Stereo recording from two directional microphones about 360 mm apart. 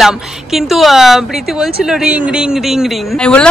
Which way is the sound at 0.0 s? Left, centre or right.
Centre.